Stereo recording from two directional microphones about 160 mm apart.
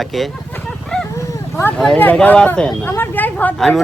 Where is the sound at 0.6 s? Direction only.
5° left (ahead or behind).